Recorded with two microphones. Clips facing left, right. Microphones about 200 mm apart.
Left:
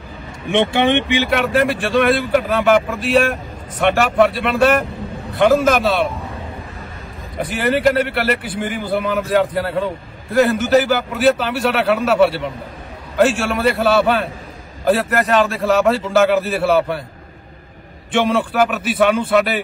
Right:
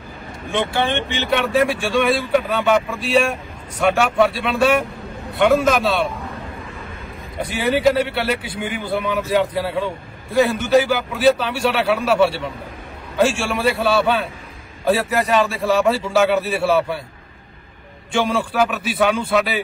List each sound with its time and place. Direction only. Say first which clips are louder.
0.5 s speech: left 5 dB; 20° left (ahead or behind)
1.3 s a man's voice: right 2 dB; centre (ahead or behind)
7.4 s a man's voice: left 1 dB; centre (ahead or behind)
18.1 s a man's voice: left 3 dB; centre (ahead or behind)